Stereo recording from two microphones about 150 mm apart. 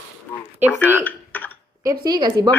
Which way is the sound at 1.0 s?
10° left (ahead or behind).